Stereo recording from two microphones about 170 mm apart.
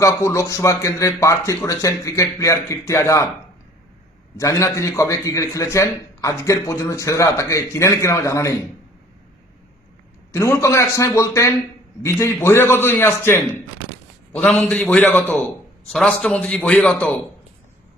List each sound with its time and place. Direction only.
0.0 s a man's voice: 15° left (ahead or behind)
4.4 s a man's voice: 20° left (ahead or behind)
10.3 s a man's voice: 15° left (ahead or behind)